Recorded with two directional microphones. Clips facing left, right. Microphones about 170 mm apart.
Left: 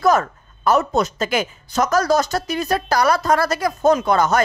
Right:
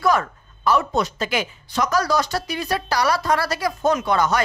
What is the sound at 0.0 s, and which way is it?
A woman's voice, 45° left (ahead or behind).